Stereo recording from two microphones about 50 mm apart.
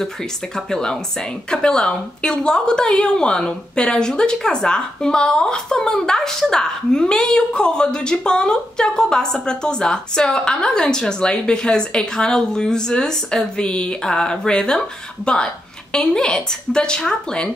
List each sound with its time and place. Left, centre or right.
0.6 s a woman's voice: centre